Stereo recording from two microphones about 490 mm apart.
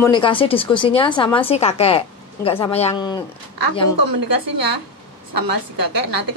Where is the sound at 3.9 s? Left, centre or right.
Right.